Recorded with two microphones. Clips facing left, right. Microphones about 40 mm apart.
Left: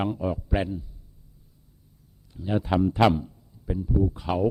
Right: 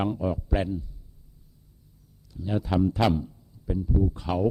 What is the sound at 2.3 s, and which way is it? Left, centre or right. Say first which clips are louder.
A man's voice: left 2 dB; left.